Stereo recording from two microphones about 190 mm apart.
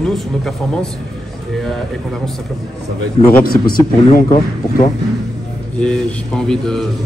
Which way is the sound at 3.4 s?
50° left (ahead or behind).